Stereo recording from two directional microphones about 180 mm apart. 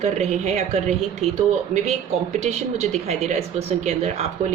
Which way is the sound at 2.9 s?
40° right (ahead or behind).